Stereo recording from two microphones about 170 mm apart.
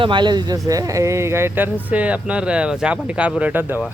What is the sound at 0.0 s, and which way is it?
Speech, 30° right (ahead or behind).